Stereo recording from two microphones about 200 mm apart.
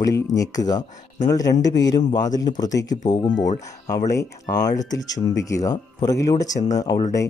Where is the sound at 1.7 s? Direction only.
60° left (ahead or behind).